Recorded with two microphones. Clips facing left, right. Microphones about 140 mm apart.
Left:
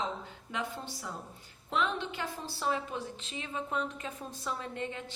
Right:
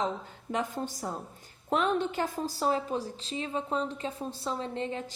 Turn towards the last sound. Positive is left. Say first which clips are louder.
# right 5 dB
turn(degrees=-30)  # may be behind; listen again after turning